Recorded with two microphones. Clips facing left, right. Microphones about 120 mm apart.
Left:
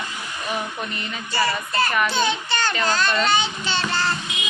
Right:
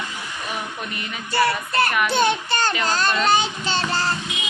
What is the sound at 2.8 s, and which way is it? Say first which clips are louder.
Child singing: even; 40° right (ahead or behind).